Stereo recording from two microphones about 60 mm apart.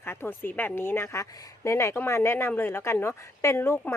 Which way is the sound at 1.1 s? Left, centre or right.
Left.